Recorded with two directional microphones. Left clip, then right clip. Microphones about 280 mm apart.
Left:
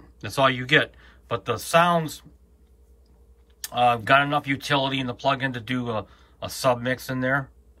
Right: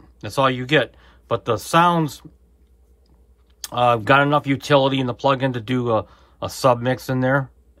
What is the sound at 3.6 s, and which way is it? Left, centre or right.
Speech, centre.